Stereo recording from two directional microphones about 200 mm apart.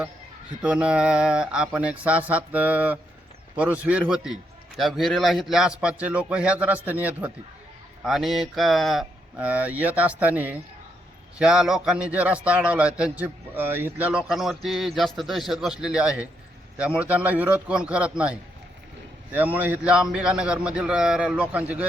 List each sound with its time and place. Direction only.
0.6 s speech: 5° right (ahead or behind)